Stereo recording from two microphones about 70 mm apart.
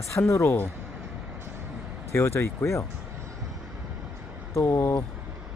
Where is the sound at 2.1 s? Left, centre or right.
Left.